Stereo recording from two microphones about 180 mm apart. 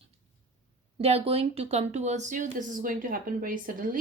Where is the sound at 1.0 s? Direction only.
35° right (ahead or behind).